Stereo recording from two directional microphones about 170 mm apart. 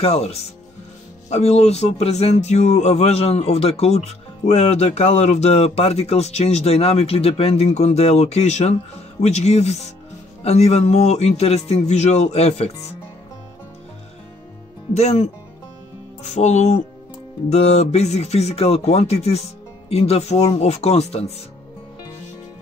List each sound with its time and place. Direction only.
0.0 s speech: 35° left (ahead or behind)
15.0 s speech: 40° left (ahead or behind)